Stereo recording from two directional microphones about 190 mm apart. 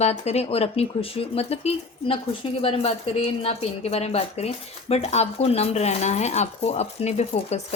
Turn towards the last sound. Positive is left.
turn(degrees=35)  # may be behind; listen again after turning